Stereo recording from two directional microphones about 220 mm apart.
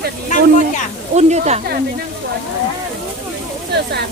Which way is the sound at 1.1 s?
30° right (ahead or behind).